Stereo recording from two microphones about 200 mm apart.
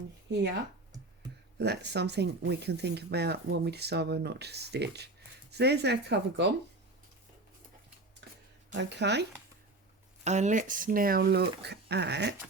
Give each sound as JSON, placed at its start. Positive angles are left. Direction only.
{"t": 1.5, "sound": "speech", "side_deg": -55}
{"t": 8.7, "sound": "speech", "side_deg": -60}
{"t": 10.2, "sound": "speech", "side_deg": -35}